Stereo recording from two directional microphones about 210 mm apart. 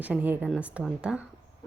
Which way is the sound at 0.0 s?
5° right (ahead or behind).